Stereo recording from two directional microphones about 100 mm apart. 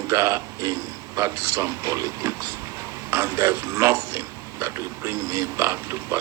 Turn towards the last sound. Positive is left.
turn(degrees=-25)  # may be behind; listen again after turning